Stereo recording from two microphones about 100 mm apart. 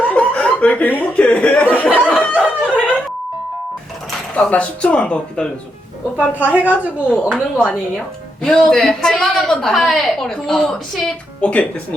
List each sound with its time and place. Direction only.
0.0 s chuckle: 10° left (ahead or behind)
2.0 s snicker: 10° left (ahead or behind)
4.4 s speech: 10° left (ahead or behind)
6.1 s a woman's voice: 15° right (ahead or behind)
6.6 s speech: 15° left (ahead or behind)
8.4 s a woman's voice: 5° left (ahead or behind)